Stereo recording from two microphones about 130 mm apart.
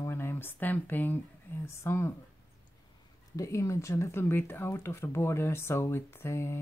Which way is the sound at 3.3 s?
25° left (ahead or behind).